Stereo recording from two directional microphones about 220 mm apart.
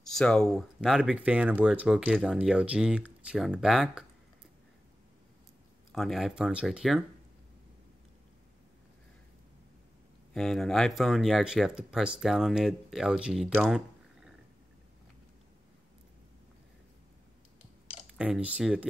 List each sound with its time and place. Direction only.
0.1 s speech: centre (ahead or behind)
5.9 s speech: centre (ahead or behind)
10.3 s speech: centre (ahead or behind)
18.1 s speech: 5° right (ahead or behind)